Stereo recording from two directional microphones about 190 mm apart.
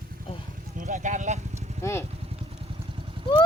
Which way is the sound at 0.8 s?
40° right (ahead or behind).